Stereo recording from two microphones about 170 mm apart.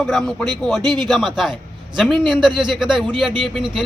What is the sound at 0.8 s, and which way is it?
Speech, 25° right (ahead or behind).